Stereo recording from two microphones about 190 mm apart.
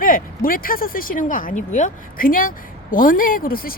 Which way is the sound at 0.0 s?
50° left (ahead or behind).